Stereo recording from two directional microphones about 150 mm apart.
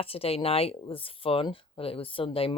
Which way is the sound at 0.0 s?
40° left (ahead or behind).